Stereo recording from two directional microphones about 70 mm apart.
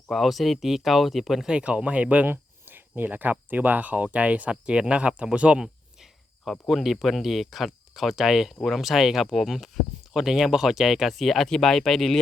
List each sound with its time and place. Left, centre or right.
0.1 s speech: centre
1.5 s speech: centre
5.6 s speech: centre